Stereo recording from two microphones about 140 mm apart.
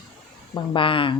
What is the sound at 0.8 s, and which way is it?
Speech, 40° left (ahead or behind).